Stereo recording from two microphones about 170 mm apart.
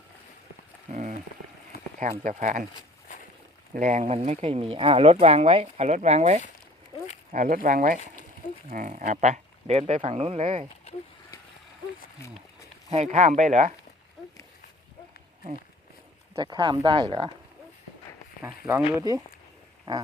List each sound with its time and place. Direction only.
0.9 s a sound: 45° right (ahead or behind)
2.0 s speech: 45° right (ahead or behind)
3.8 s speech: 50° right (ahead or behind)
7.3 s speech: 55° right (ahead or behind); by 10.7 s 40° right (ahead or behind)
12.9 s speech: 40° right (ahead or behind)
14.2 s a sound: centre (ahead or behind)
16.3 s speech: 30° right (ahead or behind)
18.9 s speech: 20° right (ahead or behind)